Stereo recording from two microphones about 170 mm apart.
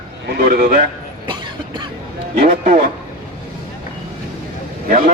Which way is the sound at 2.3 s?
50° right (ahead or behind).